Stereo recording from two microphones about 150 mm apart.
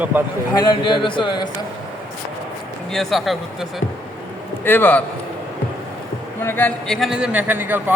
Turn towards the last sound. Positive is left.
turn(degrees=-15)  # may be behind; listen again after turning